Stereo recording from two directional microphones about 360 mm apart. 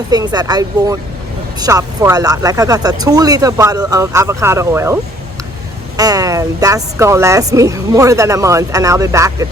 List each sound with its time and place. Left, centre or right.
0.1 s a woman's voice: centre
6.0 s a woman's voice: centre